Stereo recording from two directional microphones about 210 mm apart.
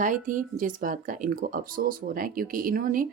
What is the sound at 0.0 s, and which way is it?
A woman's voice, 40° right (ahead or behind).